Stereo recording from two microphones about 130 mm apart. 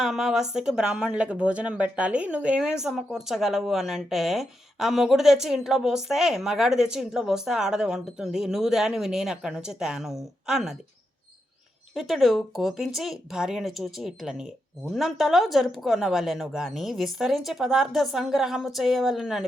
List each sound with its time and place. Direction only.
0.0 s a woman's voice: centre (ahead or behind)
11.9 s a woman's voice: centre (ahead or behind)